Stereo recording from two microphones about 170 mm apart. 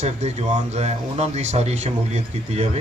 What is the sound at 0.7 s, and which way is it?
A man's voice, 40° right (ahead or behind).